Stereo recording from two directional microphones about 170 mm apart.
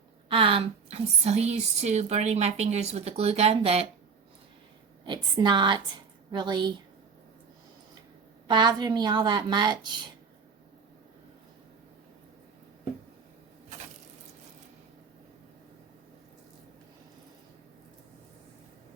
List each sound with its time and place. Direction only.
0.3 s a woman's voice: 30° right (ahead or behind)
5.0 s a woman's voice: 25° right (ahead or behind)
8.4 s a woman's voice: 25° right (ahead or behind)